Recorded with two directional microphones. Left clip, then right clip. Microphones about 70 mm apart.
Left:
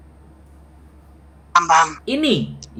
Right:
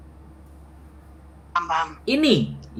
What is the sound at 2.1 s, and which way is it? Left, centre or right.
Speech, centre.